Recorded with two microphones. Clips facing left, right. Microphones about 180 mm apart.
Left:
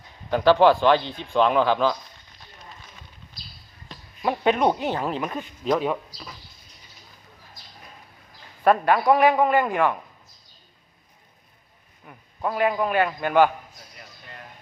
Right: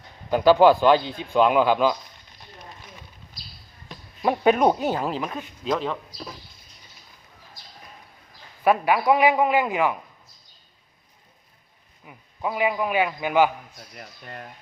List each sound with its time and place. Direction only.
0.3 s a man's voice: 10° right (ahead or behind)
3.8 s a sound: 10° right (ahead or behind)
4.9 s speech: 5° right (ahead or behind)
8.6 s a man's voice: 5° right (ahead or behind)
12.0 s a man's voice: 5° right (ahead or behind)